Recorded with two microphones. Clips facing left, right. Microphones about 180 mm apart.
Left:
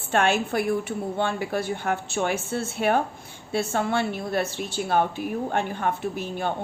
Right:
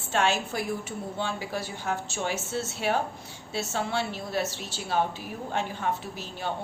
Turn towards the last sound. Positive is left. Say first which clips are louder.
# left 8 dB
turn(degrees=55)  # may be behind; listen again after turning